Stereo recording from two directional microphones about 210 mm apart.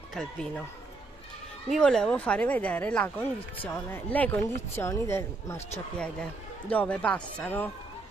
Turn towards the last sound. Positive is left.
turn(degrees=10)  # may be behind; listen again after turning